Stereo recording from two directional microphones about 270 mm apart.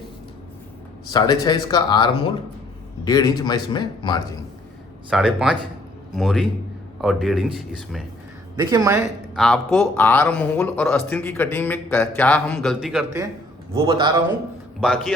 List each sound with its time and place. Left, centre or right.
1.1 s a man's voice: centre
5.1 s speech: centre
8.6 s a man's voice: centre
9.3 s speech: centre
13.7 s a man's voice: centre
14.8 s speech: centre